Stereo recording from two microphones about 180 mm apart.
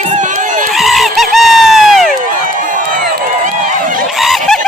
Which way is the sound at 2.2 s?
50° right (ahead or behind).